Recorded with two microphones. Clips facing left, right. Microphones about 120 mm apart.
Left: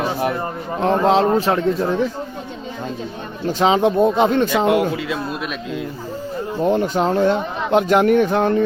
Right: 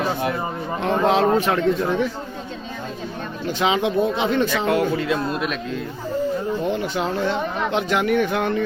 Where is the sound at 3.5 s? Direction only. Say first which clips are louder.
Left 5 dB; 40° left (ahead or behind).